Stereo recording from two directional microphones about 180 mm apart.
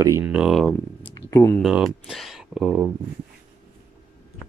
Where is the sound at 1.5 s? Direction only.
Centre (ahead or behind).